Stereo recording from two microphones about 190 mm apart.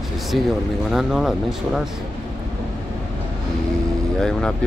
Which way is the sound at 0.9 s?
Centre (ahead or behind).